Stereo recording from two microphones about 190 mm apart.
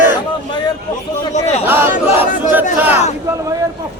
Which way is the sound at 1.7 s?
10° right (ahead or behind).